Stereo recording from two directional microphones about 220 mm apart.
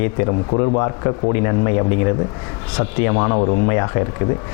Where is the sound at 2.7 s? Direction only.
25° left (ahead or behind).